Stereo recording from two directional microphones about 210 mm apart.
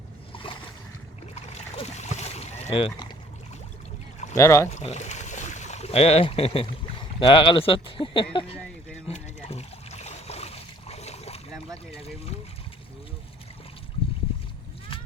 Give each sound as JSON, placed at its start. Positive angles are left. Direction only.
{"t": 0.3, "sound": "boat", "side_deg": 25}
{"t": 2.6, "sound": "speech", "side_deg": 20}
{"t": 4.4, "sound": "speech", "side_deg": 15}
{"t": 4.7, "sound": "speech", "side_deg": 35}
{"t": 9.0, "sound": "boat", "side_deg": 30}
{"t": 11.9, "sound": "speech", "side_deg": 30}